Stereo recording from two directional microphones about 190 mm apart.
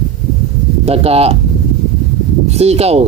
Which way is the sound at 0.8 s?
30° right (ahead or behind).